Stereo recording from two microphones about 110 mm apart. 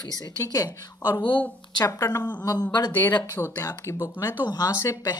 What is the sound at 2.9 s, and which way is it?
A woman's voice, 20° left (ahead or behind).